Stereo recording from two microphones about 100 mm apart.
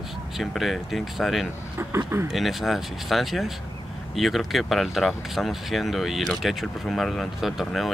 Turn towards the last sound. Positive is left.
turn(degrees=0)  # may be behind; listen again after turning